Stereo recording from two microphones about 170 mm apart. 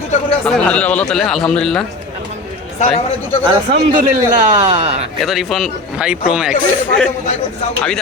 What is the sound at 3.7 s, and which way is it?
Speech, 30° right (ahead or behind).